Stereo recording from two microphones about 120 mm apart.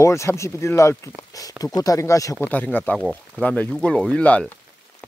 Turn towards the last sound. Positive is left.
turn(degrees=10)  # may be behind; listen again after turning